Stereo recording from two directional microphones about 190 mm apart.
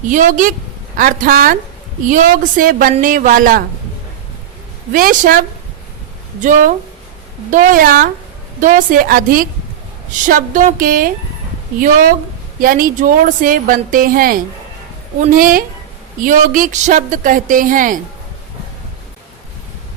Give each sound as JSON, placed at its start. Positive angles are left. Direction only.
{"t": 0.1, "sound": "speech", "side_deg": -45}
{"t": 4.9, "sound": "speech", "side_deg": -45}
{"t": 6.4, "sound": "a woman's voice", "side_deg": -40}